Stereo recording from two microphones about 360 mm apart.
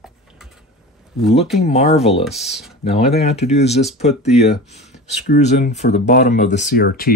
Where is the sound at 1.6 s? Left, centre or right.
Centre.